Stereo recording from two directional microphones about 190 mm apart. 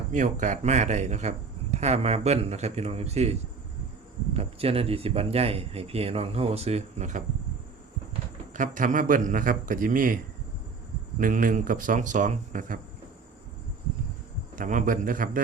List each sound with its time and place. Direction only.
0.1 s a man's voice: 40° right (ahead or behind)
4.4 s a man's voice: 30° right (ahead or behind)
8.5 s speech: 45° right (ahead or behind)
11.2 s speech: 45° right (ahead or behind)
14.5 s speech: 45° right (ahead or behind)